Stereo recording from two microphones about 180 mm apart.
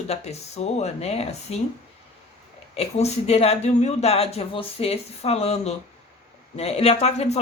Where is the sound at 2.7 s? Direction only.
35° left (ahead or behind).